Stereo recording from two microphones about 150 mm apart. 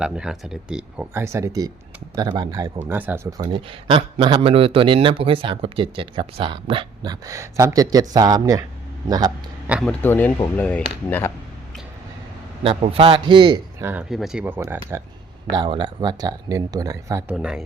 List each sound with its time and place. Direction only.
0.0 s speech: 5° right (ahead or behind)
1.1 s speech: 20° right (ahead or behind)
2.8 s speech: 10° right (ahead or behind)
3.2 s a man's voice: 25° right (ahead or behind)
9.8 s speech: 10° left (ahead or behind)
12.6 s a man's voice: 40° right (ahead or behind)
13.7 s speech: 15° right (ahead or behind)
15.4 s speech: 30° right (ahead or behind)
17.3 s speech: 5° right (ahead or behind)